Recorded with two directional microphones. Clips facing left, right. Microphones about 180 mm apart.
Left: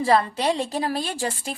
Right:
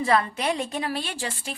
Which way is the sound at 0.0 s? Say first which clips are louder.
Left 3 dB; 35° left (ahead or behind).